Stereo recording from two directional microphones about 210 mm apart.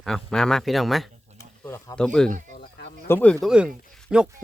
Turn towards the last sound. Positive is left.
turn(degrees=-5)  # may be behind; listen again after turning